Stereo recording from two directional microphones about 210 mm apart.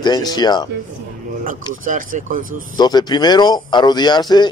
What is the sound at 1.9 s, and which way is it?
Speech, 40° right (ahead or behind).